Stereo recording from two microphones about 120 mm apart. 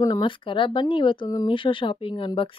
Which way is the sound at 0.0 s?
35° left (ahead or behind).